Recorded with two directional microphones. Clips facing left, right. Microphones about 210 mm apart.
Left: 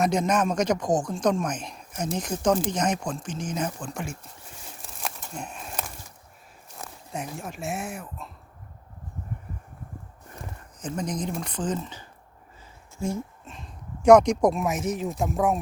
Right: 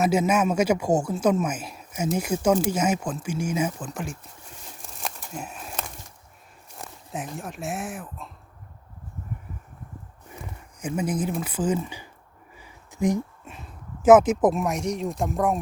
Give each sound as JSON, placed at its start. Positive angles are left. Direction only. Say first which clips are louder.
{"t": 0.0, "sound": "speech", "louder": "right 2 dB", "side_deg": -5}
{"t": 4.9, "sound": "a sound", "louder": "right 1 dB", "side_deg": 0}
{"t": 6.8, "sound": "speech", "louder": "even", "side_deg": 0}
{"t": 10.8, "sound": "speech", "louder": "right 4 dB", "side_deg": -10}